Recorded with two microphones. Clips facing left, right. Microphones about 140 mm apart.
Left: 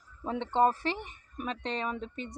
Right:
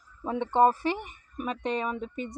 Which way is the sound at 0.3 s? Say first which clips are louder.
Right 4 dB; 10° right (ahead or behind).